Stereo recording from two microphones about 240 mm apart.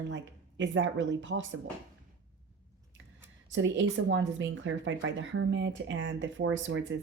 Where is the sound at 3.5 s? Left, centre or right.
Right.